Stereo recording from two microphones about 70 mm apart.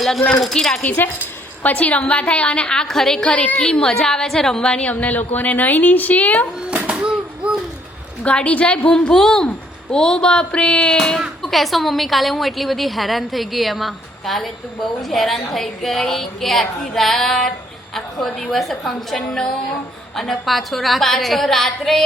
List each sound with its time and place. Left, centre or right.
0.0 s a woman's voice: centre
0.8 s a woman's voice: left
6.7 s a sound: centre
8.2 s a woman's voice: centre